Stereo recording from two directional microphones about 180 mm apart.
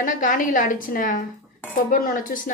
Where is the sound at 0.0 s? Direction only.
50° left (ahead or behind).